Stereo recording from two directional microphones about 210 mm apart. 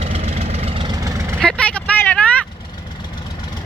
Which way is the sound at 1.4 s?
5° left (ahead or behind).